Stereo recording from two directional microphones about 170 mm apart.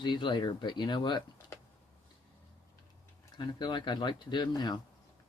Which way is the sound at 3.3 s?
25° left (ahead or behind).